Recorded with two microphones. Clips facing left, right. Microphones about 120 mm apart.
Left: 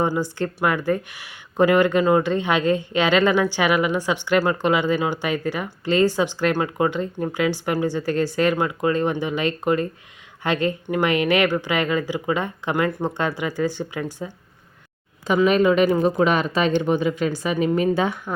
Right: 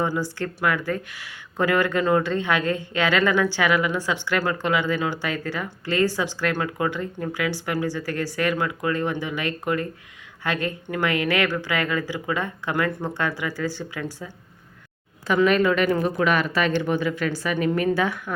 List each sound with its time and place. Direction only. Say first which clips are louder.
0.1 s speech: left 3 dB; 20° left (ahead or behind)
15.4 s speech: left 4 dB; 20° left (ahead or behind)